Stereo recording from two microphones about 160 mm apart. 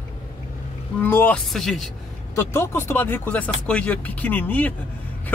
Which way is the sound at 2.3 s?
15° left (ahead or behind).